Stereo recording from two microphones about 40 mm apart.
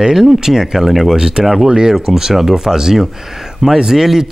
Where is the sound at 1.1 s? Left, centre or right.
Centre.